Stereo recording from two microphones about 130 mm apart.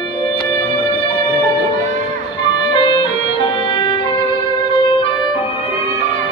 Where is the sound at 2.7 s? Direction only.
35° left (ahead or behind).